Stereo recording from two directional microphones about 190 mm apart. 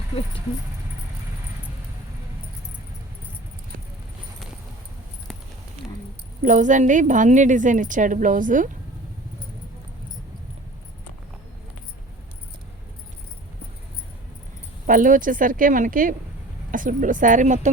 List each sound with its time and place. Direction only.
6.4 s a woman's voice: 40° right (ahead or behind)
14.8 s a woman's voice: 45° right (ahead or behind)